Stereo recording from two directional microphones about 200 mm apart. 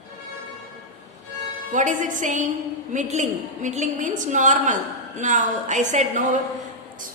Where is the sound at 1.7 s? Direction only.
40° right (ahead or behind).